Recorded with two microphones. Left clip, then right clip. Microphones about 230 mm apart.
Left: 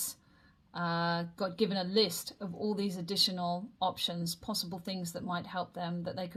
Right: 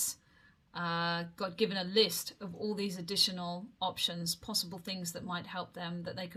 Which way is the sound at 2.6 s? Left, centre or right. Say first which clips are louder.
Left 2 dB; right.